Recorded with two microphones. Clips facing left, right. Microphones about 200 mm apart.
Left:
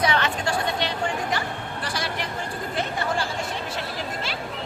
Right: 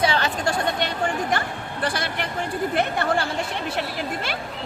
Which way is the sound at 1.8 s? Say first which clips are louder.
Right 5 dB; 55° right (ahead or behind).